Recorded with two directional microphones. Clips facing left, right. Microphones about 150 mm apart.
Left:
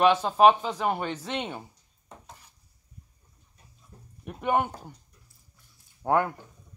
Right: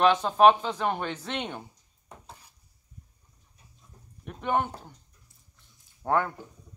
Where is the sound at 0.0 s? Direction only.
10° left (ahead or behind).